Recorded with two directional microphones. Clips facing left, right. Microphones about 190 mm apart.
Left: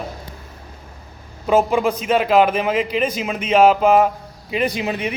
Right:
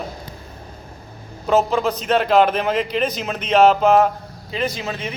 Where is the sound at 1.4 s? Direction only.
10° left (ahead or behind).